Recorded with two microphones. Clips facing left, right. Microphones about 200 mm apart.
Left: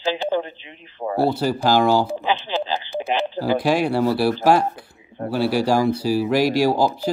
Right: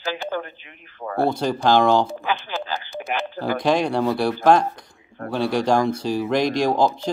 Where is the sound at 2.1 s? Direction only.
20° left (ahead or behind).